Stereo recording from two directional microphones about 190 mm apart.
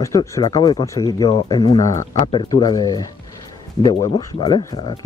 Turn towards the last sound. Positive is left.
turn(degrees=20)  # may be behind; listen again after turning